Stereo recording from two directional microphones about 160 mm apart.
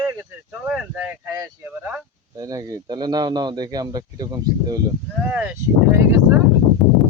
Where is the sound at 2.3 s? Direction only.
20° right (ahead or behind).